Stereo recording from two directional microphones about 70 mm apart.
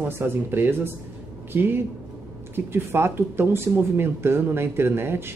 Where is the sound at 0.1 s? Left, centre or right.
Right.